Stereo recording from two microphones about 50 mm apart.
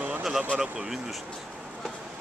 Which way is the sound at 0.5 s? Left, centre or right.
Centre.